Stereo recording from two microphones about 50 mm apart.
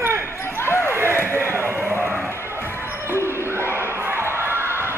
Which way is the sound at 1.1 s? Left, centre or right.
Left.